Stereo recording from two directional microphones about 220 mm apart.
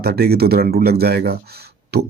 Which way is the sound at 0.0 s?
45° right (ahead or behind).